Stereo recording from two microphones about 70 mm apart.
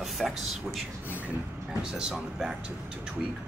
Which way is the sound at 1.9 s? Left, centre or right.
Centre.